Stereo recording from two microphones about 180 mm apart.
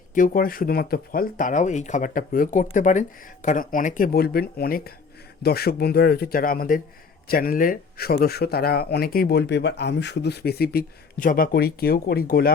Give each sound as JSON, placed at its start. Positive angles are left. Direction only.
{"t": 0.1, "sound": "speech", "side_deg": 50}